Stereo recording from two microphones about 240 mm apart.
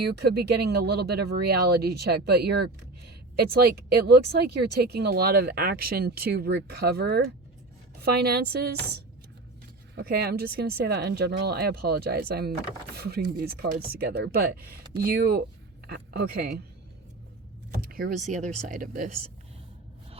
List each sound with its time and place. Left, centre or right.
0.0 s speech: right
17.7 s power windows: right
18.3 s speech: right